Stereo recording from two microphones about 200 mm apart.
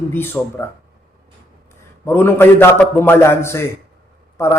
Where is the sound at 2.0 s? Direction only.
10° left (ahead or behind).